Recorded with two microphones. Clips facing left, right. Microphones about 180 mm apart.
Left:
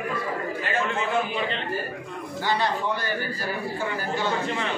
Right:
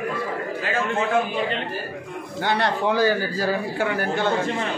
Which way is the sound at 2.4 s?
65° right (ahead or behind).